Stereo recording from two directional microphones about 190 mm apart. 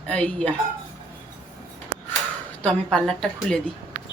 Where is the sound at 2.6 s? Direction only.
5° left (ahead or behind).